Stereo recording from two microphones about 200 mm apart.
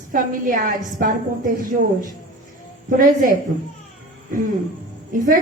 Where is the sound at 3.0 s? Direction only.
45° right (ahead or behind).